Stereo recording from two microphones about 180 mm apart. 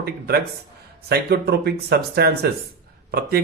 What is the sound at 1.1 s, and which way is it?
Speech, 65° right (ahead or behind).